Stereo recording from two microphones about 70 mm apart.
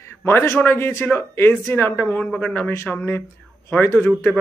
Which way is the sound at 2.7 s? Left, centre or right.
Left.